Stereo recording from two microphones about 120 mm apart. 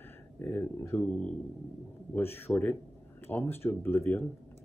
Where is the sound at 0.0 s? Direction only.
15° left (ahead or behind).